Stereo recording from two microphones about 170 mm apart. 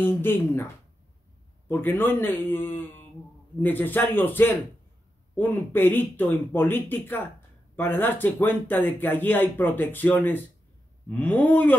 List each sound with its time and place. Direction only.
0.0 s speech: 10° left (ahead or behind)
1.7 s speech: 10° left (ahead or behind)